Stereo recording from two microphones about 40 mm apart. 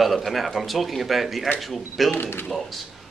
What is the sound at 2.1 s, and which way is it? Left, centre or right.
Speech, left.